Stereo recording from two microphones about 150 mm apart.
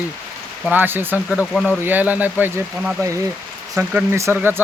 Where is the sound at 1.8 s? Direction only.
10° right (ahead or behind).